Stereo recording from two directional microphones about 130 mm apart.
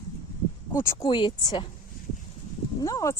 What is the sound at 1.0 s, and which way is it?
Speech, 35° left (ahead or behind).